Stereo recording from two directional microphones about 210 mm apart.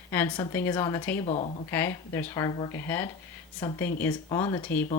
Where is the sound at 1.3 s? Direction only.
30° left (ahead or behind).